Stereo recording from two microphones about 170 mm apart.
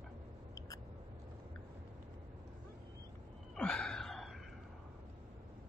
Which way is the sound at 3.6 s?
5° left (ahead or behind).